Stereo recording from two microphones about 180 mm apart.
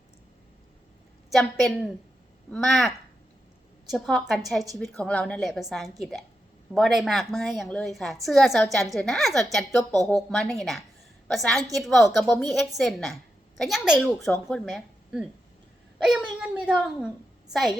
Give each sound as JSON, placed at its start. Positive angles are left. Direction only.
{"t": 1.3, "sound": "a woman's voice", "side_deg": 0}